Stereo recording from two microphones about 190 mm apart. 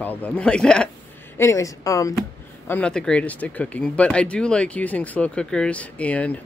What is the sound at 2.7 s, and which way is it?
Speech, 5° left (ahead or behind).